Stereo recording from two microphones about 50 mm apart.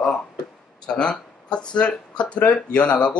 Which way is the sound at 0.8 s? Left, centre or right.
Centre.